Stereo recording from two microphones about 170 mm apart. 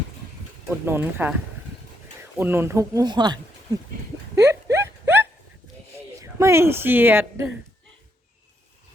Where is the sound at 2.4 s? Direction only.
15° right (ahead or behind).